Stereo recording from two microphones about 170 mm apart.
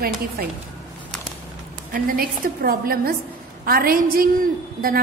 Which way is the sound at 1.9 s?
60° right (ahead or behind).